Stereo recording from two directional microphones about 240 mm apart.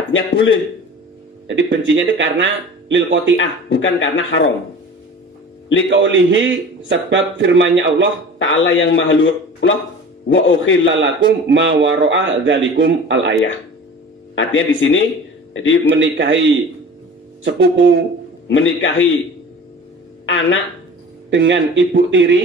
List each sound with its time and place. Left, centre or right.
1.5 s speech: right
3.3 s a man's voice: left
5.9 s speech: right
8.4 s a man's voice: left
11.0 s speech: right
14.3 s speech: left
16.0 s speech: right
18.5 s a man's voice: left
20.2 s speech: left
21.3 s speech: right